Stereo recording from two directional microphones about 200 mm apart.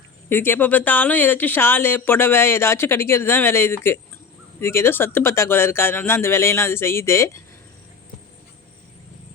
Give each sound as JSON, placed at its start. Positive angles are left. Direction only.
{"t": 0.3, "sound": "speech", "side_deg": 10}